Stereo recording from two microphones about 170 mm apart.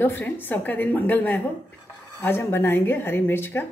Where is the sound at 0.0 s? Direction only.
10° left (ahead or behind).